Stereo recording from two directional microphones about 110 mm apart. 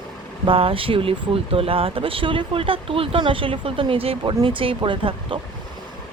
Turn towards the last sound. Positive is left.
turn(degrees=-50)  # may be behind; listen again after turning